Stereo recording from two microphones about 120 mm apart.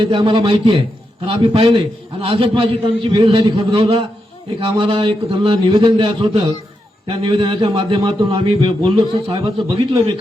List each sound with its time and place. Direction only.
0.0 s speech: 45° right (ahead or behind)